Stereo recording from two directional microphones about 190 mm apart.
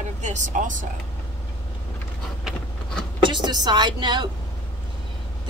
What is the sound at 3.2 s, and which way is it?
Speech, 25° right (ahead or behind).